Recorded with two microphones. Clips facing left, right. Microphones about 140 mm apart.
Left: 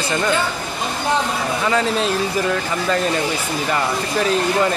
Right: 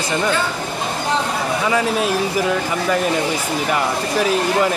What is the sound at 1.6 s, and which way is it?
Speech, 10° right (ahead or behind).